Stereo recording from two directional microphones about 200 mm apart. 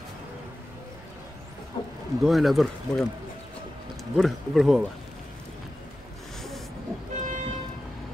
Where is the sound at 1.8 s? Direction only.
25° left (ahead or behind).